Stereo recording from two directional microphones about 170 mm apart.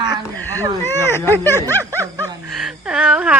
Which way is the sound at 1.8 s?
20° right (ahead or behind).